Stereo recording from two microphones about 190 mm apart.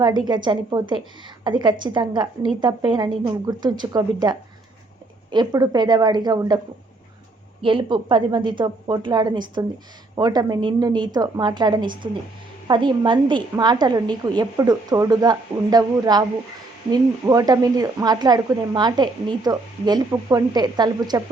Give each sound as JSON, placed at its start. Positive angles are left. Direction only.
{"t": 0.0, "sound": "speech", "side_deg": -25}
{"t": 7.6, "sound": "speech", "side_deg": -25}